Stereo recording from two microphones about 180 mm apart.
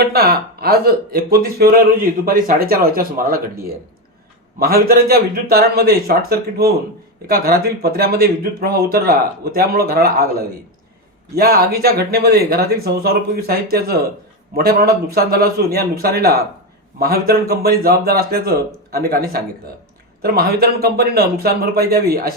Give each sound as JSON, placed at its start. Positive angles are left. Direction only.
{"t": 0.1, "sound": "speech", "side_deg": -60}
{"t": 11.3, "sound": "speech", "side_deg": -60}